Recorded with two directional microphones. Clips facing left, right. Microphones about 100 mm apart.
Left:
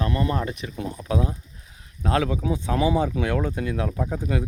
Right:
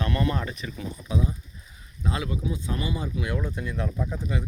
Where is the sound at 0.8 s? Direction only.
70° left (ahead or behind).